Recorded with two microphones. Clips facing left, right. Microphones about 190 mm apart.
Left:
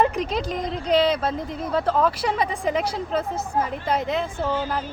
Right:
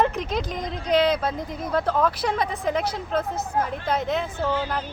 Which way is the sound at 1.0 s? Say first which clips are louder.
Left 1 dB; 5° left (ahead or behind).